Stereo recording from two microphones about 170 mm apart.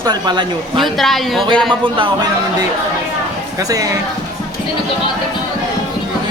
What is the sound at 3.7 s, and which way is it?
Speech, 20° right (ahead or behind).